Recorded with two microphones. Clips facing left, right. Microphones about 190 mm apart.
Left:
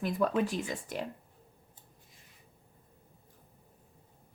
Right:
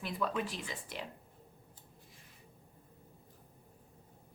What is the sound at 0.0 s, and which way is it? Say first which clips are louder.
Speech: left 7 dB; 45° left (ahead or behind).